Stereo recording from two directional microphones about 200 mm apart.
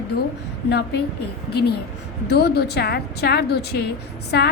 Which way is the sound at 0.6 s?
55° left (ahead or behind).